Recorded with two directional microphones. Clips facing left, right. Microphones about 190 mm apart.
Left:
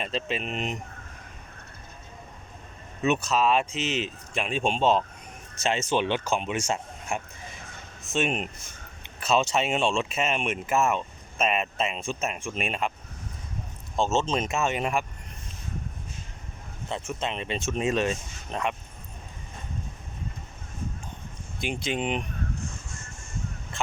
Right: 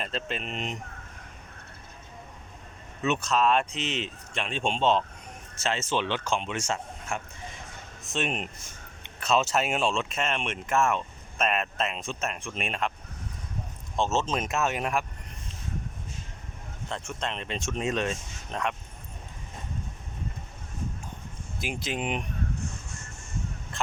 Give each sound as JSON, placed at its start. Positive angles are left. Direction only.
{"t": 0.0, "sound": "speech", "side_deg": 0}
{"t": 3.0, "sound": "speech", "side_deg": 10}
{"t": 13.9, "sound": "speech", "side_deg": 0}
{"t": 17.1, "sound": "speech", "side_deg": 5}
{"t": 21.6, "sound": "speech", "side_deg": -5}